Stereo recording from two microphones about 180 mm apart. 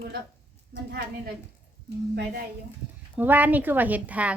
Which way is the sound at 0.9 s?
65° right (ahead or behind).